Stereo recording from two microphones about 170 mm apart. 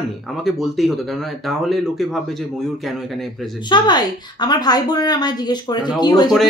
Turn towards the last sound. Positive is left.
turn(degrees=25)  # may be behind; listen again after turning